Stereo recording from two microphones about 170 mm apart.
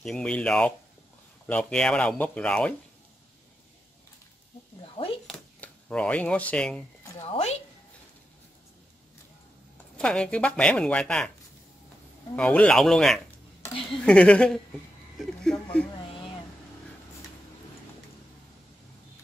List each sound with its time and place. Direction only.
0.0 s speech: 5° left (ahead or behind)
5.2 s a sound: 5° left (ahead or behind)
7.2 s a woman's voice: 40° left (ahead or behind)
9.9 s speech: 5° left (ahead or behind)
12.4 s speech: 5° left (ahead or behind)
15.1 s a sound: centre (ahead or behind)